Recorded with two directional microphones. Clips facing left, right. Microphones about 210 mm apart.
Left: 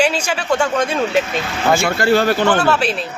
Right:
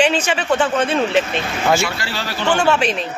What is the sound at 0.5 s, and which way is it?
Speech, 5° right (ahead or behind).